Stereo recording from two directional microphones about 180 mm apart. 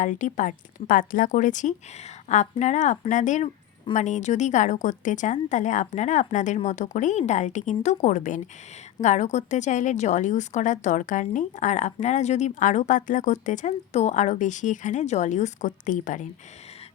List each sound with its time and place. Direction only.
0.0 s a woman's voice: 45° left (ahead or behind)